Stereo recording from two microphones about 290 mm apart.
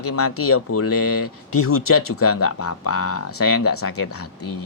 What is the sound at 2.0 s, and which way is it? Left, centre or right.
Speech, left.